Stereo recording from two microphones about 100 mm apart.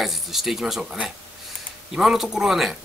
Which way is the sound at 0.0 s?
Centre (ahead or behind).